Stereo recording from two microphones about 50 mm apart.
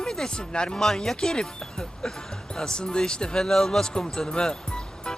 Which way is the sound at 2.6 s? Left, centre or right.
Centre.